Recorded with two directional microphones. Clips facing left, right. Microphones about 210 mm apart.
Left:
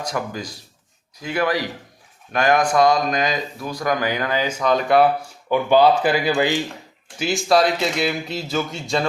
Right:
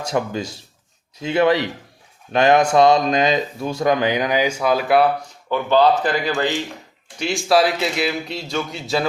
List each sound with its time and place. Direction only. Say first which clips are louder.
0.0 s speech: right 4 dB; 25° right (ahead or behind); by 5.0 s 5° right (ahead or behind)
5.5 s speech: left 1 dB; 10° left (ahead or behind)